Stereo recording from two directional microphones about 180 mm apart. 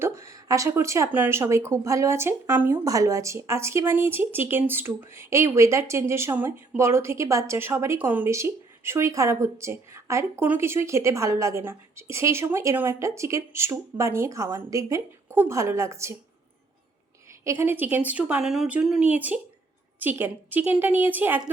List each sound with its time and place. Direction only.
0.0 s speech: 15° right (ahead or behind)
17.4 s speech: 15° right (ahead or behind)